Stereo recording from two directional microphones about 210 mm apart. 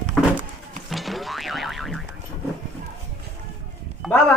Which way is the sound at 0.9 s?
Centre (ahead or behind).